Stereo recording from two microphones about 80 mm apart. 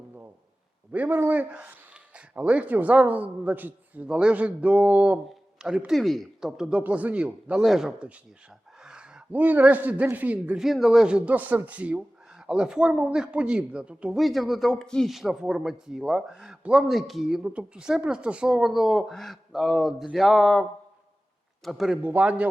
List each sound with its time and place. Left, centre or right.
0.9 s speech: right
5.3 s a sound: centre
5.9 s speech: centre
8.8 s a sound: centre
9.3 s speech: right
10.7 s speech: centre
14.2 s speech: centre
15.1 s speech: centre
17.4 s speech: centre
22.0 s speech: centre